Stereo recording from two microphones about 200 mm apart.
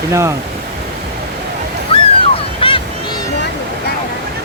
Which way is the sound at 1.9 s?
25° left (ahead or behind).